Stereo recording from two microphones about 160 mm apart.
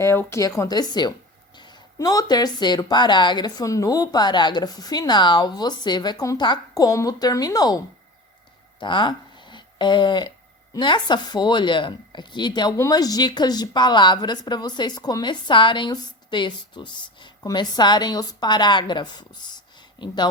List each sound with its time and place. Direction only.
0.0 s speech: 15° left (ahead or behind)
8.8 s speech: 30° left (ahead or behind)